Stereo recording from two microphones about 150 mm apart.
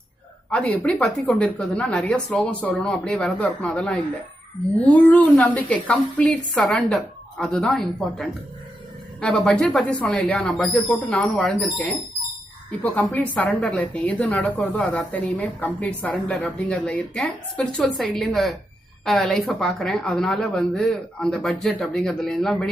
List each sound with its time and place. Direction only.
0.5 s a woman's voice: 10° left (ahead or behind)